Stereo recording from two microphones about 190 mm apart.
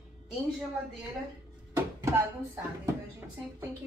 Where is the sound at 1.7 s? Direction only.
15° right (ahead or behind).